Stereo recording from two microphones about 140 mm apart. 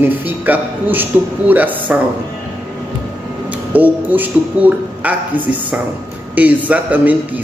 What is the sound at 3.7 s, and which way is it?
Speech, 10° right (ahead or behind).